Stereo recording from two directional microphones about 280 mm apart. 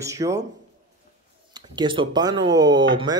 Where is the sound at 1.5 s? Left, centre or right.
Centre.